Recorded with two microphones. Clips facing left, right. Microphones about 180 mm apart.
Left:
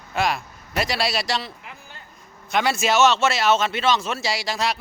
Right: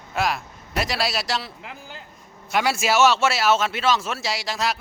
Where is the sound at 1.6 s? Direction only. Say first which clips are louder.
Right 4 dB; 90° right.